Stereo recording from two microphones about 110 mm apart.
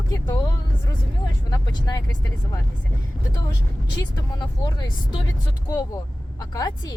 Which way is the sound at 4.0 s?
40° left (ahead or behind).